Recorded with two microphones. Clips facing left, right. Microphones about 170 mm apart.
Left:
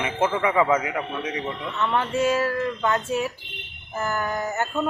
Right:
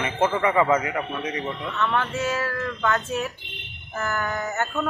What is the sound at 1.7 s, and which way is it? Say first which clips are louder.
Speech: left 2 dB; 15° left (ahead or behind).